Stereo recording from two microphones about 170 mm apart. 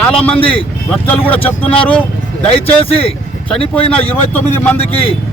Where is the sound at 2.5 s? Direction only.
35° left (ahead or behind).